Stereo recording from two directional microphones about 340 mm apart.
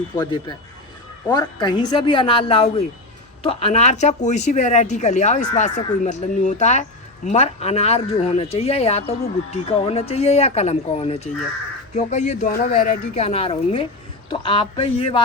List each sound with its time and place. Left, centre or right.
0.2 s speech: centre